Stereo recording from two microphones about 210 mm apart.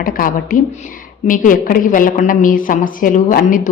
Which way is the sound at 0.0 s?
40° left (ahead or behind).